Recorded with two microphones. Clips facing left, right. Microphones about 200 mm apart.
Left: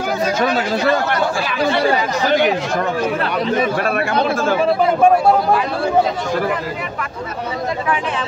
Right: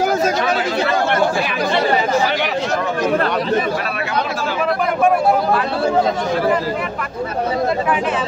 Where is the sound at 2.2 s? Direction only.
50° left (ahead or behind).